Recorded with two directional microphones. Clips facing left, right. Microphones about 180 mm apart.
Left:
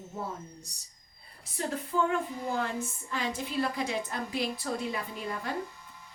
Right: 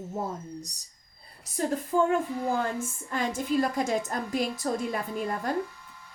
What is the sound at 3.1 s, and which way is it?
A woman's voice, 45° right (ahead or behind).